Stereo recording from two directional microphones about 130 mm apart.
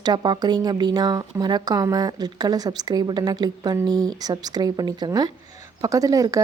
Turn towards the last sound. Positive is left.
turn(degrees=-25)  # may be behind; listen again after turning